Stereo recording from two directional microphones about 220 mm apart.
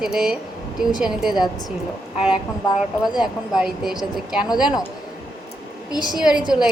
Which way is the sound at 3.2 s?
Centre (ahead or behind).